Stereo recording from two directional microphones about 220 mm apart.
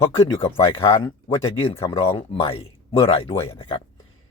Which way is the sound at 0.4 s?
25° left (ahead or behind).